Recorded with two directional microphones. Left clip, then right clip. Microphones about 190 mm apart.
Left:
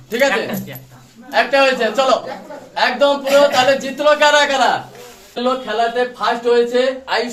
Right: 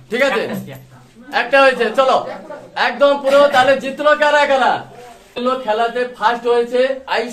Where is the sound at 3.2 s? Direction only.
Centre (ahead or behind).